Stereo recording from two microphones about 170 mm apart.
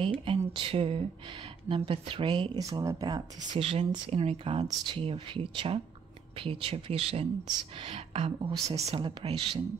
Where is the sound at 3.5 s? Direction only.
35° right (ahead or behind).